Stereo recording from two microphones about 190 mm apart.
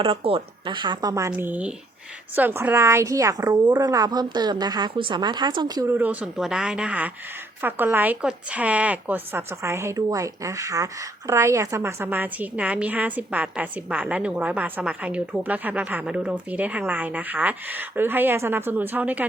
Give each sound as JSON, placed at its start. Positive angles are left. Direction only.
{"t": 0.0, "sound": "a woman's voice", "side_deg": -30}